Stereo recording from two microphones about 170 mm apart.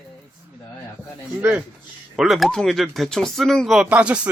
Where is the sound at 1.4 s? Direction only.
10° right (ahead or behind).